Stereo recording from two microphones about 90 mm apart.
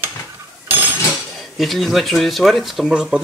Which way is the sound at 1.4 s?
Centre (ahead or behind).